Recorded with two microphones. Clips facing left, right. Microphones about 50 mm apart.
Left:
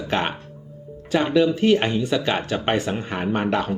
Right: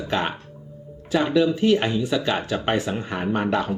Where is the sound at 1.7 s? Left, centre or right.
Left.